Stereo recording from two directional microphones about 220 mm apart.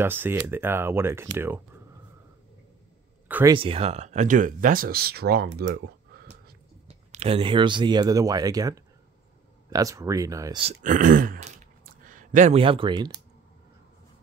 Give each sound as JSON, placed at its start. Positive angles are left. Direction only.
{"t": 0.0, "sound": "speech", "side_deg": -10}
{"t": 3.3, "sound": "a sound", "side_deg": -10}
{"t": 3.5, "sound": "speech", "side_deg": -25}
{"t": 5.5, "sound": "a sound", "side_deg": -50}
{"t": 7.1, "sound": "speech", "side_deg": -25}
{"t": 10.7, "sound": "speech", "side_deg": -35}